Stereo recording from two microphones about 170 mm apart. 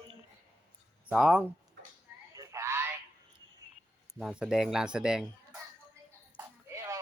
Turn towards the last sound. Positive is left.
turn(degrees=-15)  # may be behind; listen again after turning